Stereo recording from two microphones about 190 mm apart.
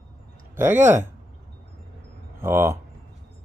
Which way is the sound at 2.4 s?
10° right (ahead or behind).